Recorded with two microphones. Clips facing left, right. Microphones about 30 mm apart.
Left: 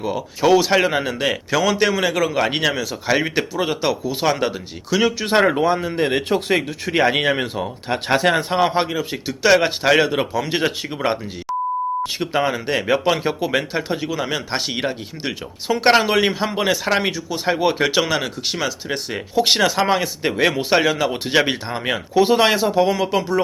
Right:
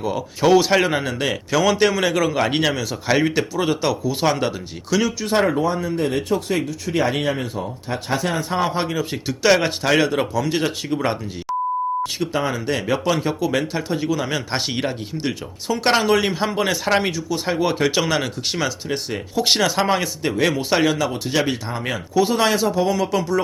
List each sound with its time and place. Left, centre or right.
0.0 s speech: centre
3.2 s speech: centre
5.0 s speech: left
8.5 s speech: left
8.9 s speech: centre
10.3 s speech: left
11.5 s beep: centre
12.2 s speech: left
14.1 s speech: centre
18.9 s speech: centre
19.5 s speech: centre
20.2 s speech: left
20.6 s speech: centre
21.0 s speech: left